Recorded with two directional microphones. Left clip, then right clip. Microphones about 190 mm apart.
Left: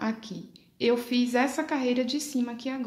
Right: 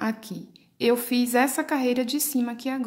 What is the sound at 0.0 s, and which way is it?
A woman's voice, 30° right (ahead or behind).